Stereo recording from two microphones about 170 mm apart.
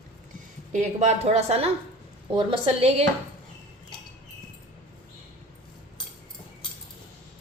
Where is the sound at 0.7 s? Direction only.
45° right (ahead or behind).